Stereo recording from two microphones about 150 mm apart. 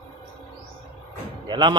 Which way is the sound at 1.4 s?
30° right (ahead or behind).